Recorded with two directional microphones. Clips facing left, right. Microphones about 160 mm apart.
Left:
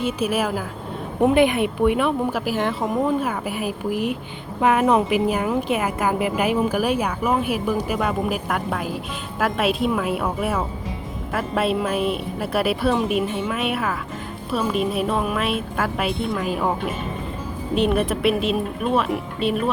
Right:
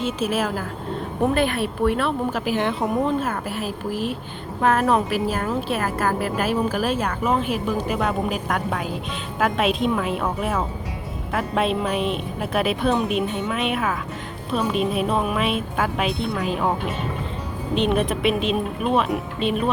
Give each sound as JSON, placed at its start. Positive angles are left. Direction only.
{"t": 0.0, "sound": "a woman's voice", "side_deg": 10}
{"t": 17.7, "sound": "a woman's voice", "side_deg": 5}